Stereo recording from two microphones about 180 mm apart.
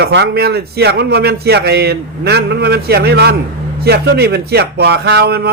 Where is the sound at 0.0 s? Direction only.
70° right (ahead or behind).